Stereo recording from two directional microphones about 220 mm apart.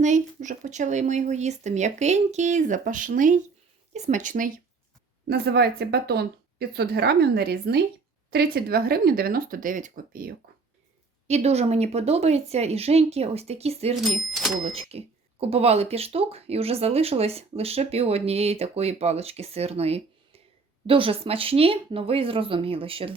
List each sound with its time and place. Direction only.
0.0 s speech: 35° right (ahead or behind)
11.3 s speech: 30° right (ahead or behind)
14.0 s speech: centre (ahead or behind)
14.8 s speech: 25° right (ahead or behind)